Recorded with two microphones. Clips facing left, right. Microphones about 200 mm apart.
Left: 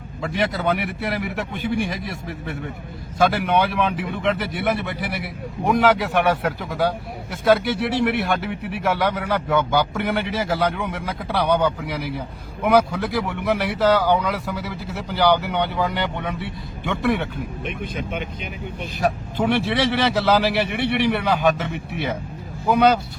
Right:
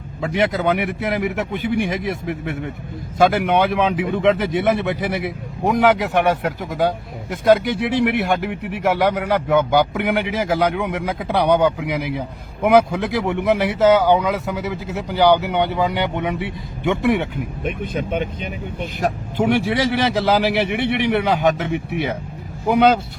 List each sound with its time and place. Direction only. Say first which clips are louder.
0.3 s speech: right 4 dB; 20° right (ahead or behind)
17.6 s speech: right 6 dB; 45° right (ahead or behind)
18.9 s speech: right 1 dB; 15° right (ahead or behind)